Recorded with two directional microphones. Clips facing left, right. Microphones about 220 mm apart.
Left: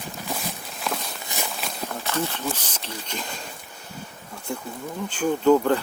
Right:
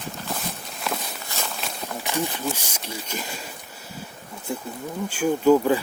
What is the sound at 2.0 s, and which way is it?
Speech, 15° right (ahead or behind).